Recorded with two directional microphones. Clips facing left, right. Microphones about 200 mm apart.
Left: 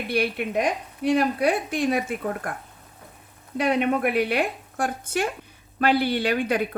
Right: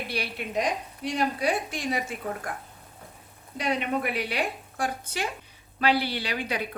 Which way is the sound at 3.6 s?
55° left (ahead or behind).